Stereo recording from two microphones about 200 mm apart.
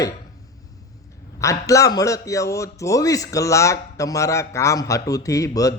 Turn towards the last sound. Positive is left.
turn(degrees=15)  # may be behind; listen again after turning